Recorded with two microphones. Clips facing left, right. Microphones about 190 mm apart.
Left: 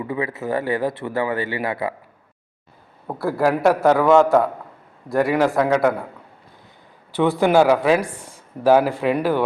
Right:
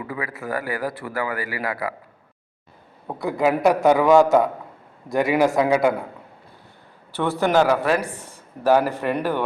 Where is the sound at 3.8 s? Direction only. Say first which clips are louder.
Even; 20° right (ahead or behind).